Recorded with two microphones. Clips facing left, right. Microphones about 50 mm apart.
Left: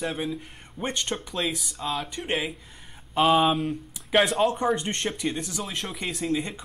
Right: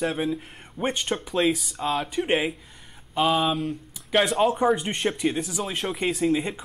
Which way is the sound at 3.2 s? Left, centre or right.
Centre.